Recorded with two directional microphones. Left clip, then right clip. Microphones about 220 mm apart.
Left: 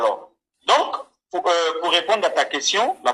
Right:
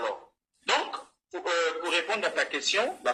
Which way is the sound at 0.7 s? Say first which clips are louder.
Left 10 dB; 35° left (ahead or behind).